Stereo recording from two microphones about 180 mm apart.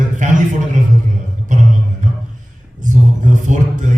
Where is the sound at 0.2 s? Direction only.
45° right (ahead or behind).